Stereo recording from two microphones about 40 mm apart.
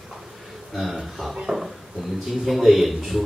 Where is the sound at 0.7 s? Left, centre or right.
Centre.